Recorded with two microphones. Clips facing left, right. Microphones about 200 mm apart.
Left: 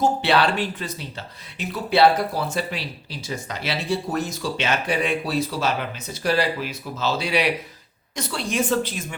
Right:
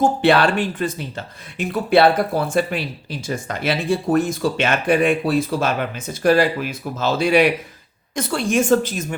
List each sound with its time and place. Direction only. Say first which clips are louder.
0.0 s speech: right 4 dB; 50° right (ahead or behind)